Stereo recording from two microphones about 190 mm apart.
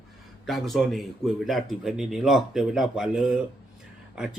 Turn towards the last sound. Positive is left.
turn(degrees=-5)  # may be behind; listen again after turning